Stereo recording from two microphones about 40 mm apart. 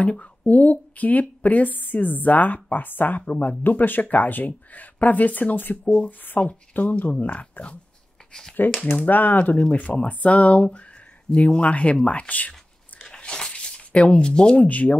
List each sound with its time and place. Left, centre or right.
0.5 s a woman's voice: left
3.2 s speech: left
3.4 s a woman's voice: left
5.9 s speech: left
6.4 s a woman's voice: left
8.3 s a sound: centre
8.9 s a woman's voice: left
13.1 s a sound: centre
14.3 s speech: centre
14.6 s speech: left